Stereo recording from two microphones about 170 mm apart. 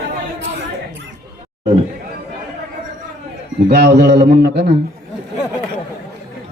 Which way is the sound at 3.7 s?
80° right.